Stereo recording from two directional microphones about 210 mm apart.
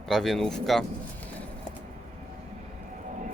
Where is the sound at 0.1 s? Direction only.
Centre (ahead or behind).